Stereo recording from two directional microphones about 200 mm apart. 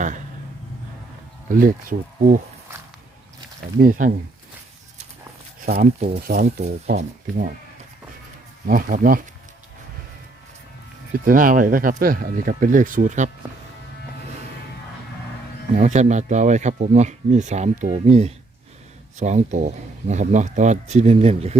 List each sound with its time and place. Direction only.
1.5 s speech: 40° right (ahead or behind)
3.8 s speech: 40° right (ahead or behind)
5.6 s speech: 50° right (ahead or behind)
8.6 s speech: 45° right (ahead or behind)
11.1 s speech: 45° right (ahead or behind)
15.7 s speech: 35° right (ahead or behind)